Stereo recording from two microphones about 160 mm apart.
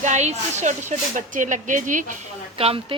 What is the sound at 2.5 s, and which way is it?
Speech, 35° right (ahead or behind).